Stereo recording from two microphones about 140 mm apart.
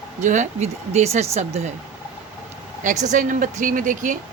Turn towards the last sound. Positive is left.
turn(degrees=-70)  # may be behind; listen again after turning